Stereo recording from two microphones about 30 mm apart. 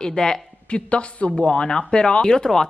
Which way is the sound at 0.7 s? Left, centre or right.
Left.